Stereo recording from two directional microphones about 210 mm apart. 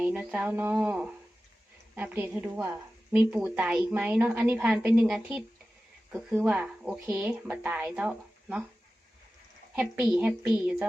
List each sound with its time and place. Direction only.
0.0 s a woman's voice: 5° right (ahead or behind)
9.7 s a woman's voice: 5° right (ahead or behind)